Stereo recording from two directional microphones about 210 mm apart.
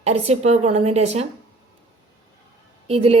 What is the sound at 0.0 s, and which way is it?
A woman's voice, 30° right (ahead or behind).